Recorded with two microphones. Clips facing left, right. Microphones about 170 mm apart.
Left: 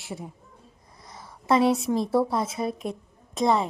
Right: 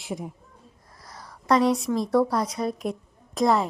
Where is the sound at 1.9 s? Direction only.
25° left (ahead or behind).